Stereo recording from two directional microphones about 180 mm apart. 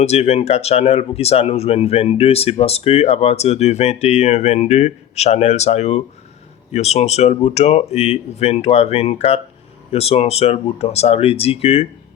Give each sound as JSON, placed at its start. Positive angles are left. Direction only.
{"t": 0.0, "sound": "speech", "side_deg": 35}